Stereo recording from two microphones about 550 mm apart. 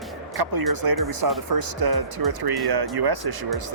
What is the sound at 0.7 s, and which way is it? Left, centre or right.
Speech, right.